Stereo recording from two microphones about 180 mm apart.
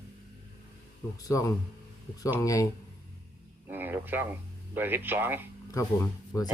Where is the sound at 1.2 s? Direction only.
20° left (ahead or behind).